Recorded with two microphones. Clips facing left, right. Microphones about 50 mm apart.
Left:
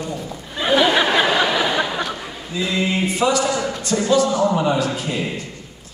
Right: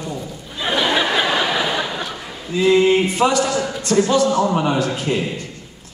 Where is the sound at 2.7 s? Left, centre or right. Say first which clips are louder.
Right 8 dB; right.